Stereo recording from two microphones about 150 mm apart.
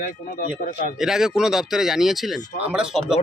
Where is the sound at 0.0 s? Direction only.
70° left (ahead or behind).